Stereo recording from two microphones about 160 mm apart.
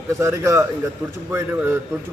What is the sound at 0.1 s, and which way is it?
Speech, 20° right (ahead or behind).